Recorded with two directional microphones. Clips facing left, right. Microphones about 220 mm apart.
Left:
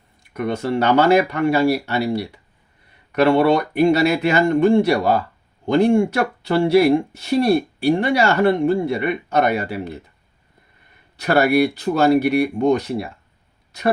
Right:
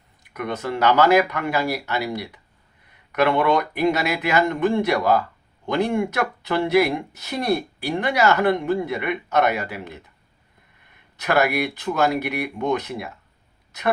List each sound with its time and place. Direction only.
0.3 s speech: 30° left (ahead or behind)
11.2 s speech: 35° left (ahead or behind)